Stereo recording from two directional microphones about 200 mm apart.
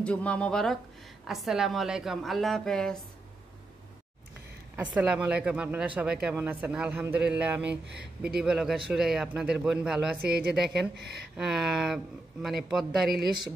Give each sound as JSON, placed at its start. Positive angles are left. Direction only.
{"t": 0.0, "sound": "speech", "side_deg": 5}
{"t": 4.7, "sound": "speech", "side_deg": -5}
{"t": 10.2, "sound": "speech", "side_deg": -50}
{"t": 11.3, "sound": "speech", "side_deg": -5}